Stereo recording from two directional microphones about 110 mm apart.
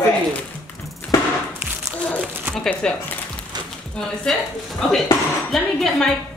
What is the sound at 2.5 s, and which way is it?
Speech, 5° left (ahead or behind).